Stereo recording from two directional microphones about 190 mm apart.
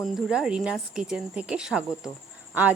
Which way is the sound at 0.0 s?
5° right (ahead or behind).